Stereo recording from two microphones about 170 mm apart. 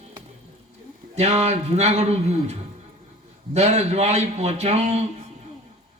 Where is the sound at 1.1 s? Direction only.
40° right (ahead or behind).